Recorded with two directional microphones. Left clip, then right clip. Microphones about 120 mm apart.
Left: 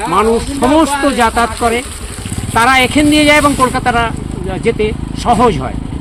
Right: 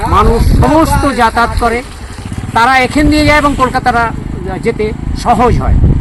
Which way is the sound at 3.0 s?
45° right (ahead or behind).